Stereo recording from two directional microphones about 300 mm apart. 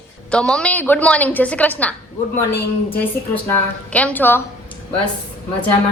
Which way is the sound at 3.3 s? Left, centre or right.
Centre.